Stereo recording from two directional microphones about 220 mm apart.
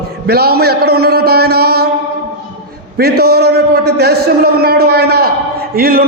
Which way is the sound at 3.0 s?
45° right (ahead or behind).